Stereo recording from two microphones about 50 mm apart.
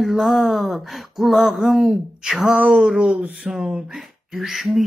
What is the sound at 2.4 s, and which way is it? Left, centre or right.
Speech, centre.